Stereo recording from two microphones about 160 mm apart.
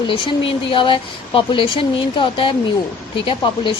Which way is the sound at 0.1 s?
35° left (ahead or behind).